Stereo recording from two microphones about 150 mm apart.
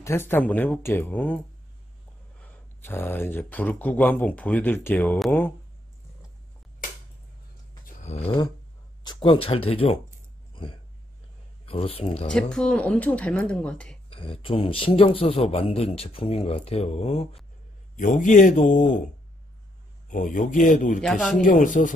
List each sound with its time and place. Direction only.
0.0 s speech: 15° left (ahead or behind)
2.4 s speech: 15° left (ahead or behind)
7.8 s a sound: 50° left (ahead or behind)
9.0 s speech: 30° left (ahead or behind)
10.5 s a sound: 35° left (ahead or behind)
11.6 s speech: 40° left (ahead or behind)
12.3 s speech: 5° left (ahead or behind)
14.1 s speech: 35° left (ahead or behind)
17.9 s speech: 60° left (ahead or behind)
20.1 s speech: 60° left (ahead or behind)
21.0 s speech: centre (ahead or behind)
21.4 s speech: 60° left (ahead or behind)